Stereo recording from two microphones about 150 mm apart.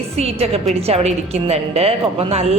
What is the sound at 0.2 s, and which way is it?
A woman's voice, 45° right (ahead or behind).